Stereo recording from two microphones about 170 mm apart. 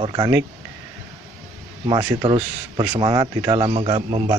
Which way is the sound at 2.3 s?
30° right (ahead or behind).